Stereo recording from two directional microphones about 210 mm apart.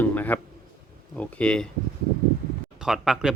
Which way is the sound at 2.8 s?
Centre (ahead or behind).